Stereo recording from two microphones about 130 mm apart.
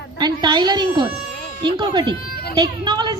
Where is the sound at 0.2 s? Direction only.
35° right (ahead or behind).